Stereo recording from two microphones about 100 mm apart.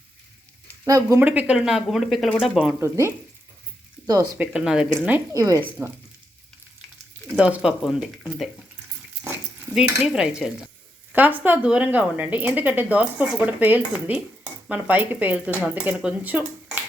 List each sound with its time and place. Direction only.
0.9 s speech: 35° right (ahead or behind)
1.2 s speech: 15° right (ahead or behind)
2.8 s speech: 25° right (ahead or behind)
4.4 s speech: 5° right (ahead or behind)
5.3 s speech: 35° right (ahead or behind)
7.3 s speech: 10° right (ahead or behind)
9.7 s speech: 5° right (ahead or behind)